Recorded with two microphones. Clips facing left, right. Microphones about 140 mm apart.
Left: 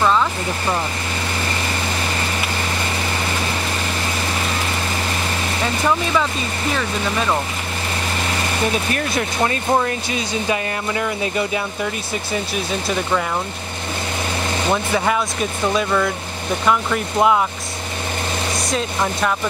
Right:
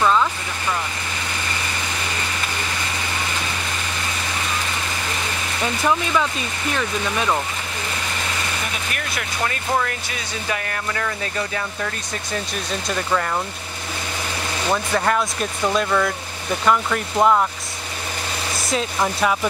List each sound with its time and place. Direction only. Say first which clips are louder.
0.0 s speech: left 1 dB; 5° left (ahead or behind)
8.9 s speech: left 7 dB; 30° left (ahead or behind); by 13.2 s 5° left (ahead or behind)
14.7 s speech: left 1 dB; 5° left (ahead or behind)
18.7 s speech: right 1 dB; centre (ahead or behind)